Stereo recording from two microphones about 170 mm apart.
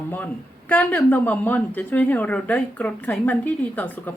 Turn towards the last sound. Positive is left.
turn(degrees=10)  # may be behind; listen again after turning